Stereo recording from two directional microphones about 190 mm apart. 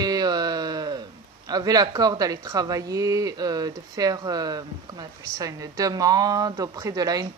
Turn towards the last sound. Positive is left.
turn(degrees=-20)  # may be behind; listen again after turning